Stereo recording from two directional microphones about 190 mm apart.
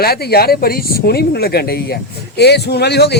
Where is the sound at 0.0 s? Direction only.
55° left (ahead or behind).